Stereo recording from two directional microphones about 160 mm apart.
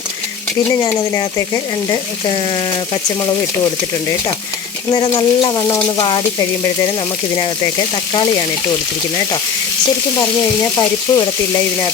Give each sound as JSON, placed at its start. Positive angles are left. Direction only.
{"t": 0.9, "sound": "speech", "side_deg": 25}
{"t": 4.9, "sound": "speech", "side_deg": 30}
{"t": 8.1, "sound": "speech", "side_deg": 25}
{"t": 10.8, "sound": "speech", "side_deg": 25}